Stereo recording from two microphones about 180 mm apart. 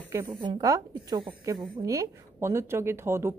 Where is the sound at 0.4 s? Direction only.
20° right (ahead or behind).